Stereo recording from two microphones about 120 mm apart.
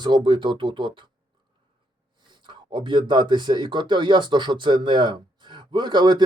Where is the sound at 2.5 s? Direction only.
40° right (ahead or behind).